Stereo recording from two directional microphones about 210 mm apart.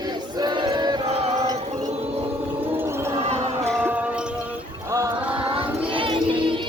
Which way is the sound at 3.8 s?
5° right (ahead or behind).